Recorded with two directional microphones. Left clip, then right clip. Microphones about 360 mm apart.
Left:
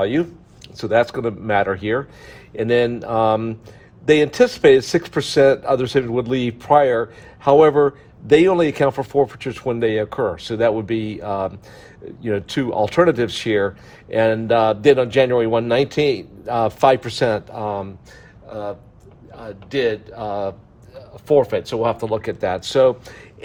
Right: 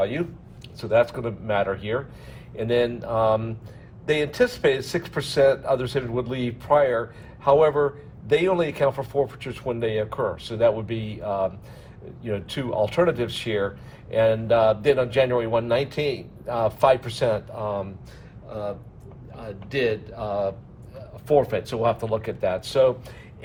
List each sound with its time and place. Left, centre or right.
0.0 s a man's voice: left